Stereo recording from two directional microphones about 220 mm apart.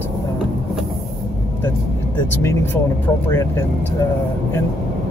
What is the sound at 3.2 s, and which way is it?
Speech, 10° left (ahead or behind).